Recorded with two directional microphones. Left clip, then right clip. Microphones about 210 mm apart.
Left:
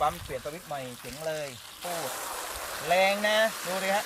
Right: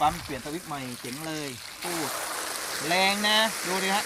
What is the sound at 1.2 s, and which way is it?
Speech, 15° left (ahead or behind).